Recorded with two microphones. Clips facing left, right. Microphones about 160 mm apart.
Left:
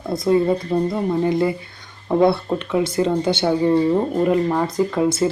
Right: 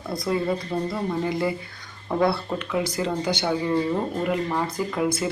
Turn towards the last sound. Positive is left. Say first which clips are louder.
# left 7 dB
turn(degrees=25)  # may be behind; listen again after turning